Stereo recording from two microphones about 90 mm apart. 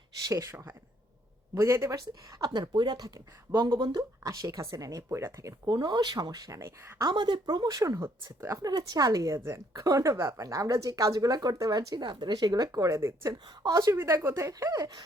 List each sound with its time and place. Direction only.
1.5 s speech: 30° right (ahead or behind)
2.0 s speech: 50° right (ahead or behind); by 5.5 s 35° right (ahead or behind)
5.6 s speech: 55° right (ahead or behind); by 6.9 s 35° right (ahead or behind)
7.0 s speech: 60° right (ahead or behind); by 13.0 s 40° right (ahead or behind)
13.0 s speech: 30° right (ahead or behind)
13.6 s speech: 40° right (ahead or behind)
13.9 s speech: 30° right (ahead or behind)